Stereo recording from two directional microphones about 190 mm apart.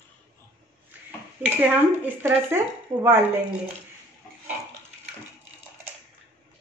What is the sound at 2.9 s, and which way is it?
Speech, 35° right (ahead or behind).